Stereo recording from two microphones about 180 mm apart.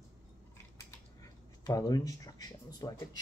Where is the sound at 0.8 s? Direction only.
20° left (ahead or behind).